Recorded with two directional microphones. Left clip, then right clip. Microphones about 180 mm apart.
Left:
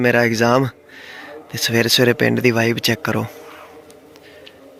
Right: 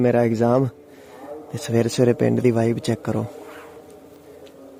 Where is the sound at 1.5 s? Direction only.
10° right (ahead or behind).